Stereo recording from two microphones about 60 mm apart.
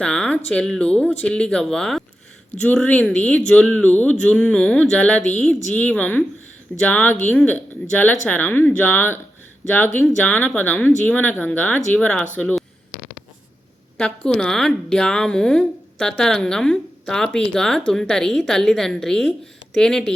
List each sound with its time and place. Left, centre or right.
0.0 s a woman's voice: centre
2.9 s speech: left
11.9 s a woman's voice: centre
14.3 s a woman's voice: centre